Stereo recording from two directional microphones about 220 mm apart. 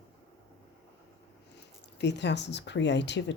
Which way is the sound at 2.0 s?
50° left (ahead or behind).